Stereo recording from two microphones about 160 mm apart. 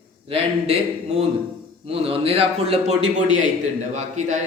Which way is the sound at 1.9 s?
35° right (ahead or behind).